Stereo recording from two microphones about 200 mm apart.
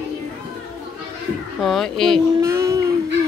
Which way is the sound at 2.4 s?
15° right (ahead or behind).